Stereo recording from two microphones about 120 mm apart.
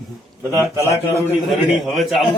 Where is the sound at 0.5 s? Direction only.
20° right (ahead or behind).